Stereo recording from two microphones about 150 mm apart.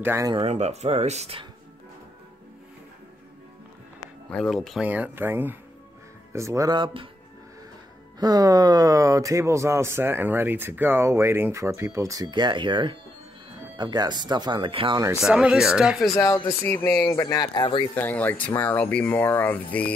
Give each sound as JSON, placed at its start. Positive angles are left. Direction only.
{"t": 0.0, "sound": "speech", "side_deg": -15}
{"t": 0.5, "sound": "speech", "side_deg": -45}
{"t": 4.3, "sound": "speech", "side_deg": 0}
{"t": 4.8, "sound": "speech", "side_deg": -10}
{"t": 8.2, "sound": "speech", "side_deg": -25}
{"t": 15.2, "sound": "speech", "side_deg": -5}
{"t": 16.1, "sound": "speech", "side_deg": 20}
{"t": 17.9, "sound": "speech", "side_deg": 10}